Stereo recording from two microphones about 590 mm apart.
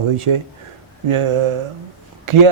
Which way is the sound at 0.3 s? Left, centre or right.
Right.